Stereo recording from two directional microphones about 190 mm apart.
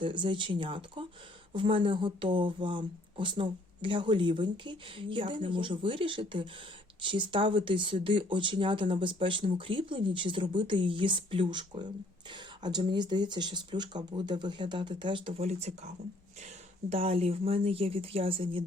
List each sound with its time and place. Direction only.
0.0 s speech: 25° right (ahead or behind)
16.9 s speech: 30° right (ahead or behind)